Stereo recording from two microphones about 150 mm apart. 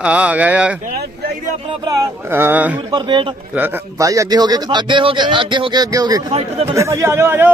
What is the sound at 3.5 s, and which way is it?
A man's voice, 15° right (ahead or behind).